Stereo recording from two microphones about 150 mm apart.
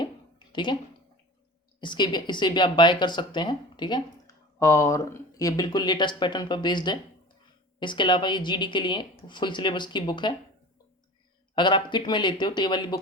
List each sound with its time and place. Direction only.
0.0 s a sound: 30° left (ahead or behind)
1.8 s speech: 30° left (ahead or behind)
11.5 s speech: 30° left (ahead or behind)